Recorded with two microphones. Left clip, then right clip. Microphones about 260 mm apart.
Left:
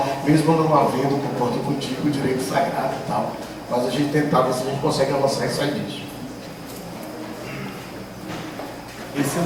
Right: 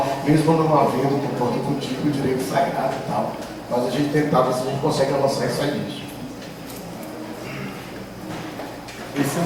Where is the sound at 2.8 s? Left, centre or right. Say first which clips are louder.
Even; centre.